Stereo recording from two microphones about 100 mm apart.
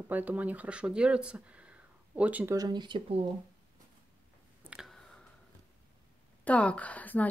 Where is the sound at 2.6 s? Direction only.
45° right (ahead or behind).